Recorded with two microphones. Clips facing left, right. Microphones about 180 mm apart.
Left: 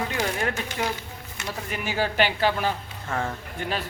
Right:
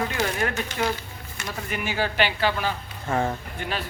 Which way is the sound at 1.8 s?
40° left (ahead or behind).